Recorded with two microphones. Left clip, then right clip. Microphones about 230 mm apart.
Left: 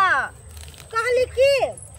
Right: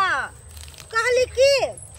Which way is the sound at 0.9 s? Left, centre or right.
Centre.